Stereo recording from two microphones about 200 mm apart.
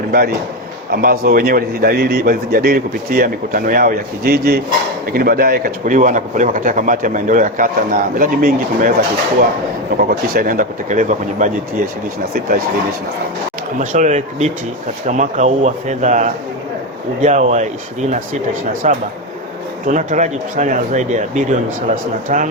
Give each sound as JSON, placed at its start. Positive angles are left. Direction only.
{"t": 0.9, "sound": "speech", "side_deg": -50}
{"t": 13.7, "sound": "speech", "side_deg": -35}
{"t": 18.7, "sound": "speech", "side_deg": -40}